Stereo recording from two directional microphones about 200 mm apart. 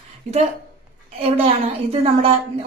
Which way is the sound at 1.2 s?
30° right (ahead or behind).